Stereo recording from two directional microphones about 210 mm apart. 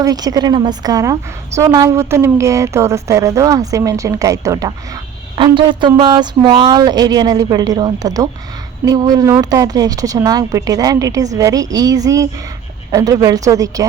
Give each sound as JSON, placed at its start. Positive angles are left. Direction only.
{"t": 0.0, "sound": "a woman's voice", "side_deg": -15}